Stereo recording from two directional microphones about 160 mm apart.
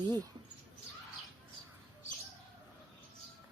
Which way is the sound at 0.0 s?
25° right (ahead or behind).